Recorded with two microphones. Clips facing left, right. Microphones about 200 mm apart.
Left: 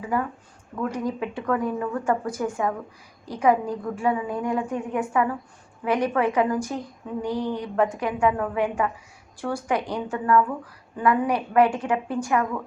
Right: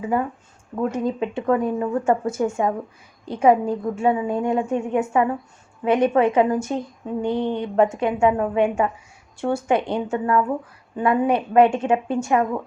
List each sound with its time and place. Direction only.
0.0 s a woman's voice: 25° right (ahead or behind)